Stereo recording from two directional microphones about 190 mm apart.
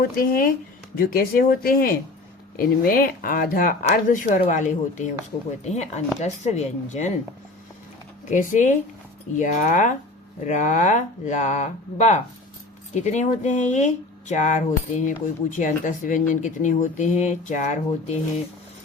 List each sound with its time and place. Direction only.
0.0 s speech: 50° left (ahead or behind)
8.3 s speech: 40° left (ahead or behind)